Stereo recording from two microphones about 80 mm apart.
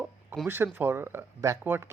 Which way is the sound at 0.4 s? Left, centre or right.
Right.